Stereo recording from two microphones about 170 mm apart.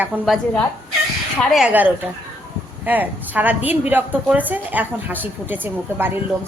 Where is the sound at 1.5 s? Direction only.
5° right (ahead or behind).